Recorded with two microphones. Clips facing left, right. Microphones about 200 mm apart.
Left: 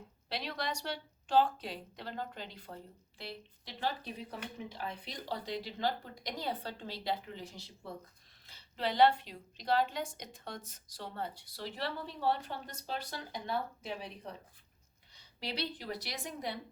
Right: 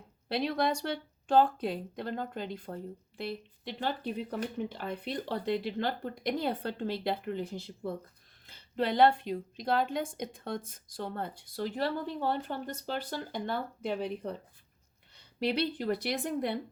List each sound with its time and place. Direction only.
0.3 s a woman's voice: 50° right (ahead or behind)